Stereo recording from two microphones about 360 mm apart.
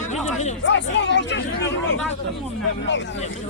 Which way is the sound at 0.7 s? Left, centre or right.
Left.